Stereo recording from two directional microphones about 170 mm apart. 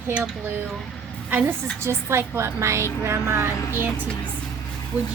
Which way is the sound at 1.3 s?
10° right (ahead or behind).